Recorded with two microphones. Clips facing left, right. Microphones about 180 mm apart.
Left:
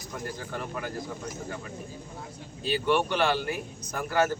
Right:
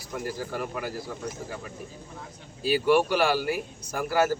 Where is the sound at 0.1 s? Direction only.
5° right (ahead or behind).